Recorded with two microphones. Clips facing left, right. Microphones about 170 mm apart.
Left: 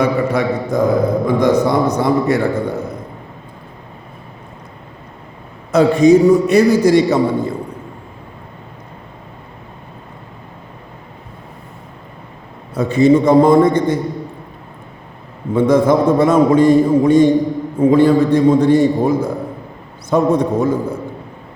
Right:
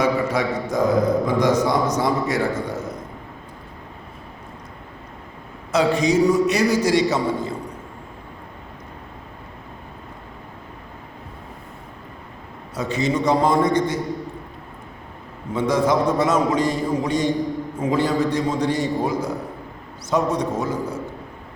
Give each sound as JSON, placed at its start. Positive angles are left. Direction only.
{"t": 0.0, "sound": "mantra", "side_deg": 60}
{"t": 1.3, "sound": "a sound", "side_deg": 60}
{"t": 5.7, "sound": "a man's voice", "side_deg": 55}
{"t": 12.7, "sound": "a man's voice", "side_deg": 55}
{"t": 15.5, "sound": "a man's voice", "side_deg": 55}